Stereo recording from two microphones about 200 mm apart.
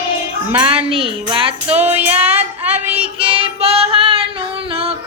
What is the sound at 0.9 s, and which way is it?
Speech, 25° right (ahead or behind).